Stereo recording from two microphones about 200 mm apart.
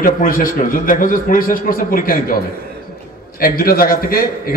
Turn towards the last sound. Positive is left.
turn(degrees=45)  # may be behind; listen again after turning